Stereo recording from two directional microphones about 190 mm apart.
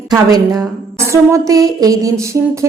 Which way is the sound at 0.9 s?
15° right (ahead or behind).